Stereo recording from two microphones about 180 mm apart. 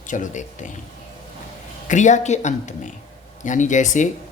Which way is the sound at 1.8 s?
40° left (ahead or behind).